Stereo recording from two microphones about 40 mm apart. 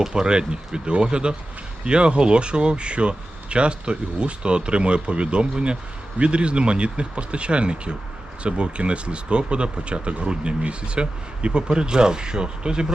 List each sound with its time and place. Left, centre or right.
0.0 s speech: right